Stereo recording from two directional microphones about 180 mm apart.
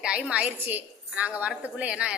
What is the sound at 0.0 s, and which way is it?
A woman's voice, 5° right (ahead or behind).